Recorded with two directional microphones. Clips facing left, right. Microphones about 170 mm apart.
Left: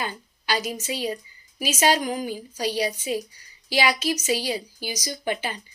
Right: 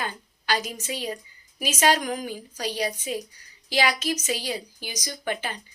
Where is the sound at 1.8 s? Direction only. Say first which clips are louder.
Left 1 dB; 5° left (ahead or behind).